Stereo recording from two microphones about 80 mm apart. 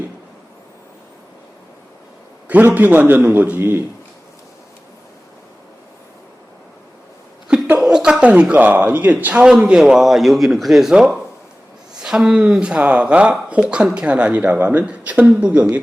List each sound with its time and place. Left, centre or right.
2.5 s a man's voice: right
3.6 s a man's voice: right
7.8 s a sound: centre
8.2 s speech: centre